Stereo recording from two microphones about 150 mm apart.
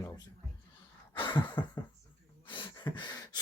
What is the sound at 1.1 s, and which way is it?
Speech, 30° left (ahead or behind).